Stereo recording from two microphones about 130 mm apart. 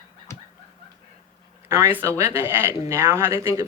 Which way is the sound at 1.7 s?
20° right (ahead or behind).